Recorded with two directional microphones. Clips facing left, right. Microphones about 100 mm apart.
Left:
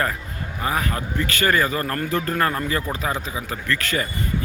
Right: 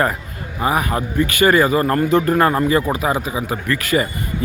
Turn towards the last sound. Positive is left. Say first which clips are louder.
# right 6 dB
turn(degrees=-10)  # may be behind; listen again after turning